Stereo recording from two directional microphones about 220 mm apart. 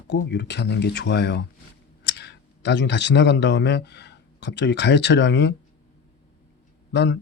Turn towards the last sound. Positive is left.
turn(degrees=50)  # may be behind; listen again after turning